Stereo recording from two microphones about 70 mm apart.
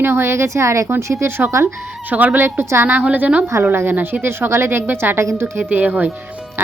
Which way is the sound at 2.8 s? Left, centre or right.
Right.